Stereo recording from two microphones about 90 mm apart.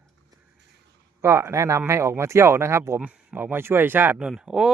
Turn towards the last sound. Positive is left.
turn(degrees=-5)  # may be behind; listen again after turning